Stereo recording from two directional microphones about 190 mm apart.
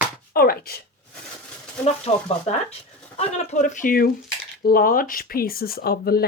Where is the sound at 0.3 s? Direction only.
50° left (ahead or behind).